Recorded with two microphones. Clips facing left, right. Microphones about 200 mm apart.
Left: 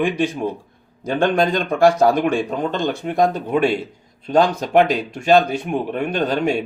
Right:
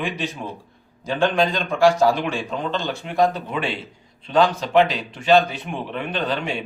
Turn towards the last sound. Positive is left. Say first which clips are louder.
# left 6 dB
turn(degrees=45)  # may be behind; listen again after turning